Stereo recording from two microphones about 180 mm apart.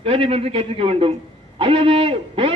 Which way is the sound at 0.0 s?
30° right (ahead or behind).